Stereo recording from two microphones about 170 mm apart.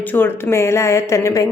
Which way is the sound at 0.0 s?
10° left (ahead or behind).